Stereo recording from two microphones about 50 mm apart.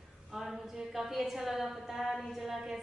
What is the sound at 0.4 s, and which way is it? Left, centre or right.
A woman's voice, centre.